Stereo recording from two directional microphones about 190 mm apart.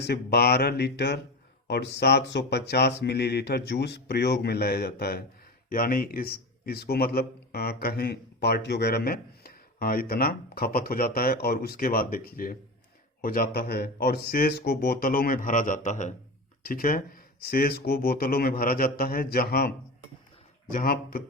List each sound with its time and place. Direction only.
0.0 s a man's voice: 60° left (ahead or behind)
20.7 s a man's voice: 50° left (ahead or behind)